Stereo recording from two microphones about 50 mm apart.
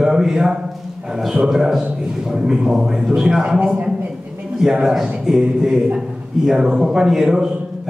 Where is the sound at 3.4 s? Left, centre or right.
Centre.